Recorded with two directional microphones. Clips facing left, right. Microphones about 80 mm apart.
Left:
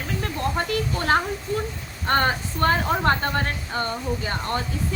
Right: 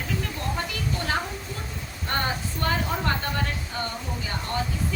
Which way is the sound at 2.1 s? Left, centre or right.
Left.